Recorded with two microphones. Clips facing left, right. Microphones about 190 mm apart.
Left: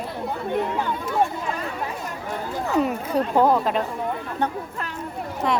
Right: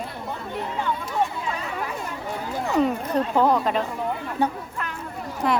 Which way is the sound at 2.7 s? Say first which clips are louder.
Even; 10° left (ahead or behind).